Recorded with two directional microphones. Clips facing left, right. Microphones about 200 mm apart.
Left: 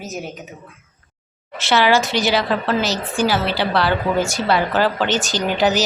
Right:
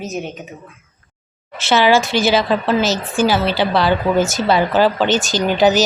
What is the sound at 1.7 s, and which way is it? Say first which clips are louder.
Speech: right 2 dB; 15° right (ahead or behind).